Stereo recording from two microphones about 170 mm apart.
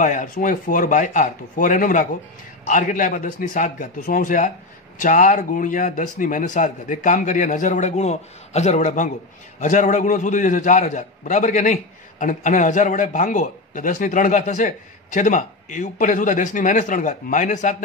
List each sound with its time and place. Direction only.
0.0 s a man's voice: 50° left (ahead or behind)